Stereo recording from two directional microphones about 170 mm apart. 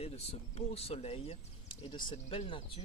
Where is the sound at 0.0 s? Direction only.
35° left (ahead or behind).